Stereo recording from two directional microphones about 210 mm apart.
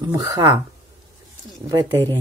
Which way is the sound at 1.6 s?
15° right (ahead or behind).